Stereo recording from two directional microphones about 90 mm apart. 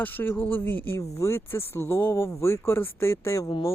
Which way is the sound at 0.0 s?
25° left (ahead or behind).